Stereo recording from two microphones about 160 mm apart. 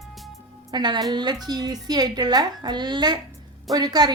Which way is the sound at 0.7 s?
30° right (ahead or behind).